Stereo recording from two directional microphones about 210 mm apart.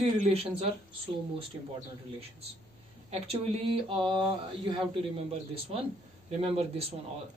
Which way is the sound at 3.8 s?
25° right (ahead or behind).